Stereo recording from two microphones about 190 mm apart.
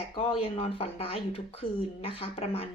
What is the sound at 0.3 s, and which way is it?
Speech, 30° left (ahead or behind).